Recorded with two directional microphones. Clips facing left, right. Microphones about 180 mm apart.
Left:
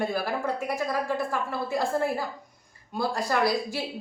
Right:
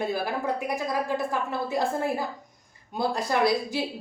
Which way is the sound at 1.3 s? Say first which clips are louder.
Right 1 dB; 20° right (ahead or behind).